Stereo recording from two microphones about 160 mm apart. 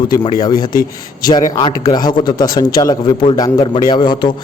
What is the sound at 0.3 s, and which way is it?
A man's voice, 25° left (ahead or behind).